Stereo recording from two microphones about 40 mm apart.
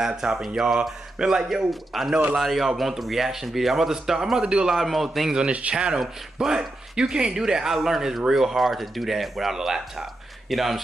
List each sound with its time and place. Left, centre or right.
0.0 s speech: centre
1.7 s speech: centre
4.7 s speech: centre
5.5 s speech: right
5.8 s speech: centre